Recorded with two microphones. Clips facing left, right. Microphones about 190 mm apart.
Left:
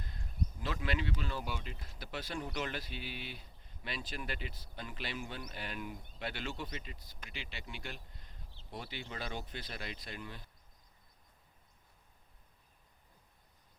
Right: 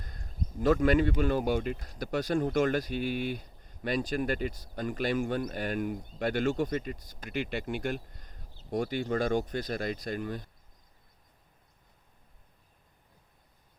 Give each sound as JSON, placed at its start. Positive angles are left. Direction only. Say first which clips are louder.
{"t": 0.0, "sound": "speech", "louder": "right 1 dB", "side_deg": -45}